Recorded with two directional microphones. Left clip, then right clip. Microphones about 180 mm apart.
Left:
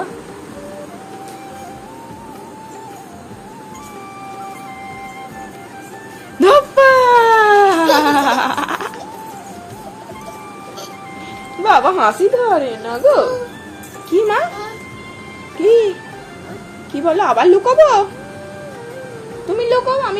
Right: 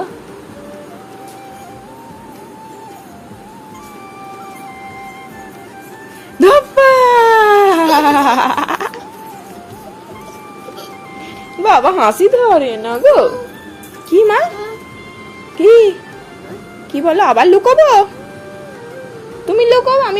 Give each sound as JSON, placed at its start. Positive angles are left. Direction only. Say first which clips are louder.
{"t": 6.4, "sound": "a sound", "louder": "right 1 dB", "side_deg": -30}
{"t": 11.6, "sound": "speech", "louder": "right 2 dB", "side_deg": -40}
{"t": 16.9, "sound": "speech", "louder": "right 3 dB", "side_deg": -50}
{"t": 19.5, "sound": "a woman's voice", "louder": "right 6 dB", "side_deg": -50}